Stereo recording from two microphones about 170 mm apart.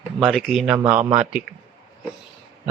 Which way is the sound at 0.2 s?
Centre (ahead or behind).